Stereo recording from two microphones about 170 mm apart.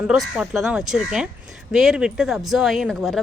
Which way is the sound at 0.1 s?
Centre (ahead or behind).